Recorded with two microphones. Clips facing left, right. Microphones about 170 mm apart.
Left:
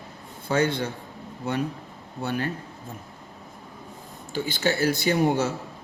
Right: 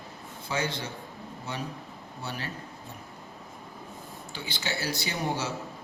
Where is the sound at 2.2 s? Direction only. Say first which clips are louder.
Left 10 dB; 55° left (ahead or behind).